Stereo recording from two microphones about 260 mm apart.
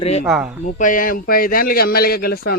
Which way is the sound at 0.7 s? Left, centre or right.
Left.